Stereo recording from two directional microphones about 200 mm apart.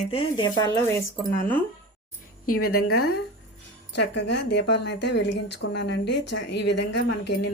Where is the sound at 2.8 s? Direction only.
90° left.